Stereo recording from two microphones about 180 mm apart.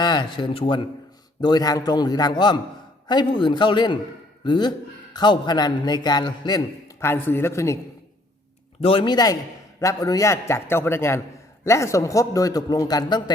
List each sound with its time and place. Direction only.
0.0 s a man's voice: 25° left (ahead or behind)
8.8 s a man's voice: 30° left (ahead or behind)